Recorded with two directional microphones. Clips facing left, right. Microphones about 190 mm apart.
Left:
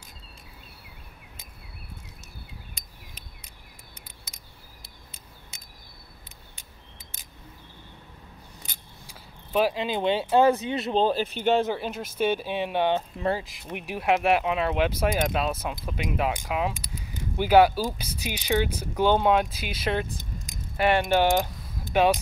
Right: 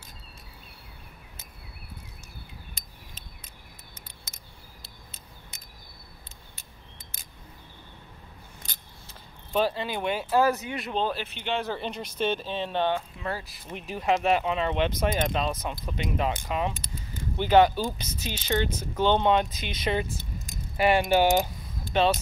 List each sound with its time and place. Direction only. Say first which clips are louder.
8.6 s keys jangling: left 1 dB; 10° left (ahead or behind)
9.8 s speech: left 4 dB; 25° left (ahead or behind); by 11.6 s 40° left (ahead or behind)
11.6 s speech: left 3 dB; 10° left (ahead or behind)
21.9 s speech: left 2 dB; 10° left (ahead or behind)